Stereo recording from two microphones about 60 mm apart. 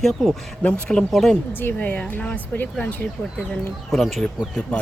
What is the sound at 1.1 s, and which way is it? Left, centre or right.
Speech, centre.